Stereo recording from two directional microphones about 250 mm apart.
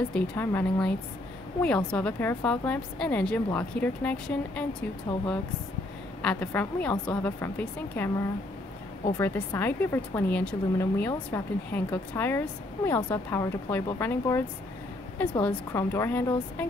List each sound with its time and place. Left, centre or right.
0.1 s a woman's voice: centre
6.2 s speech: centre
9.2 s speech: centre